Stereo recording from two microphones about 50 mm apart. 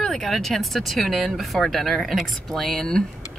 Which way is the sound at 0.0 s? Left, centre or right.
Centre.